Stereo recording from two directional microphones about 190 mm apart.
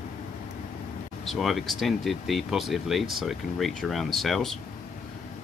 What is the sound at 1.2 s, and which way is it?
Speech, centre (ahead or behind).